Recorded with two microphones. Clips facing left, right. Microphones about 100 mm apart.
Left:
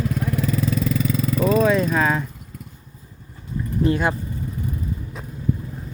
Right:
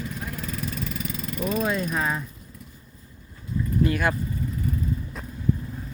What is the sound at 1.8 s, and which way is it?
Speech, 90° left.